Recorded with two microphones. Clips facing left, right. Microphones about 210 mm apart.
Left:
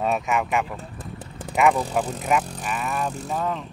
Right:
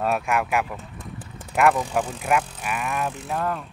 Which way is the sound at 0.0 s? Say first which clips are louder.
Even; centre (ahead or behind).